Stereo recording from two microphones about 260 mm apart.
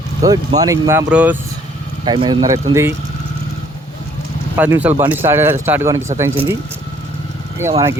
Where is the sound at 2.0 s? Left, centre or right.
Centre.